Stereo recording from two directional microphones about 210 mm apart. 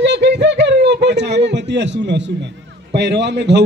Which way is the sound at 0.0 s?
55° right (ahead or behind).